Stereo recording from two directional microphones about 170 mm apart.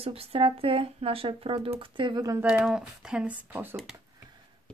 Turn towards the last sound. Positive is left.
turn(degrees=-10)  # may be behind; listen again after turning